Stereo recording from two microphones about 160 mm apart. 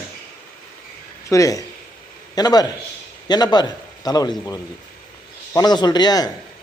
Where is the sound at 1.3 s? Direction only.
20° left (ahead or behind).